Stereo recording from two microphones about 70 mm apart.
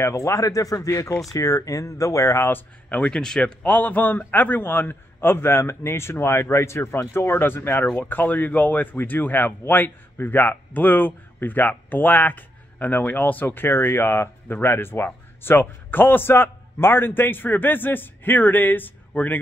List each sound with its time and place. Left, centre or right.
0.0 s speech: left
2.9 s a man's voice: centre